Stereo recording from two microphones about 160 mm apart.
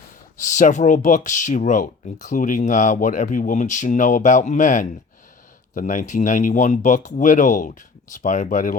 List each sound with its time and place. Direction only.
0.3 s speech: 50° left (ahead or behind)